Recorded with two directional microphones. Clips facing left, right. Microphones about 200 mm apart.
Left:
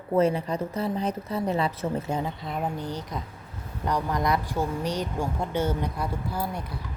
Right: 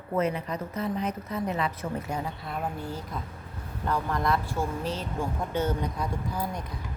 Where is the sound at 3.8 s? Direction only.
15° left (ahead or behind).